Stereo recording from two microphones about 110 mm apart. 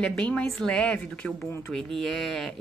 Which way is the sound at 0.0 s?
10° left (ahead or behind).